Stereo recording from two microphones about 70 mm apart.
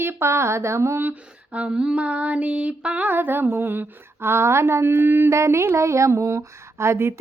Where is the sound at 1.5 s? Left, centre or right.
Centre.